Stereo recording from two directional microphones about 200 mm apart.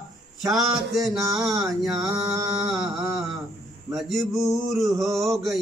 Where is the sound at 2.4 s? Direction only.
15° right (ahead or behind).